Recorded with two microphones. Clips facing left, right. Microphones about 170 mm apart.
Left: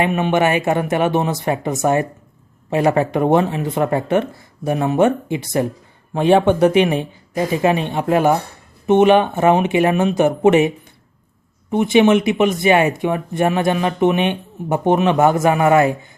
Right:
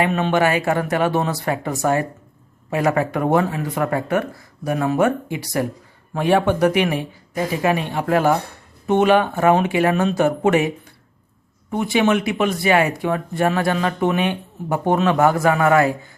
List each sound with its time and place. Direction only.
0.0 s speech: 15° left (ahead or behind)
11.7 s speech: 20° left (ahead or behind)